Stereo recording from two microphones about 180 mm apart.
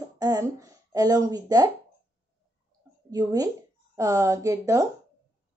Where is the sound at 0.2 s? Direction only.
20° right (ahead or behind).